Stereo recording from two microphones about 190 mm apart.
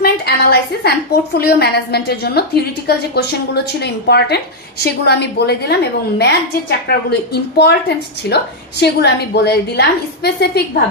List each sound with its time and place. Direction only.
0.0 s a woman's voice: 55° left (ahead or behind)